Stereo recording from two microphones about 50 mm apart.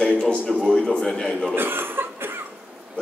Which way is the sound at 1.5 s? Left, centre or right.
Right.